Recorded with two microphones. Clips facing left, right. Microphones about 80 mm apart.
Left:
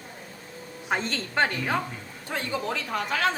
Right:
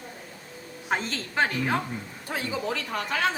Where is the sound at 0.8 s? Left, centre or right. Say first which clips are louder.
Left 1 dB; centre.